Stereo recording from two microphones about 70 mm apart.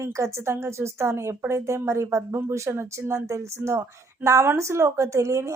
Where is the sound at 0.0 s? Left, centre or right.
Right.